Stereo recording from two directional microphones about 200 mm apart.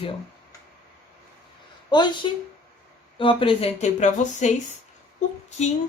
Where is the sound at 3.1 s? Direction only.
25° left (ahead or behind).